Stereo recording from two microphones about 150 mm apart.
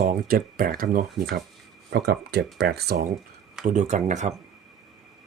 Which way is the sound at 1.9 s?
90° right.